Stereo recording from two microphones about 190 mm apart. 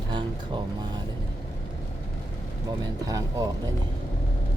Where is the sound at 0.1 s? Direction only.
25° right (ahead or behind).